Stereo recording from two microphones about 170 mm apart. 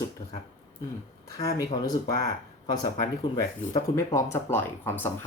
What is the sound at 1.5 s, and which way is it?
Speech, 20° left (ahead or behind).